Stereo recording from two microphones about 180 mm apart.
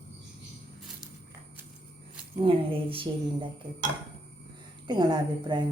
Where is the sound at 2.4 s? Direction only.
30° right (ahead or behind).